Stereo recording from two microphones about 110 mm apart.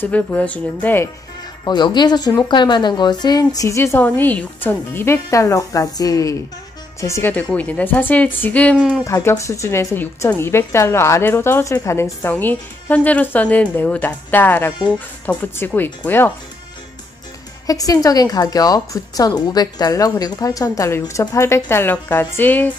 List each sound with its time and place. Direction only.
0.0 s speech: 15° left (ahead or behind)
1.6 s a woman's voice: 40° left (ahead or behind); by 8.7 s 15° left (ahead or behind)
8.7 s speech: 5° right (ahead or behind)
9.0 s a woman's voice: 30° left (ahead or behind)
17.6 s a woman's voice: 30° left (ahead or behind); by 22.7 s 15° left (ahead or behind)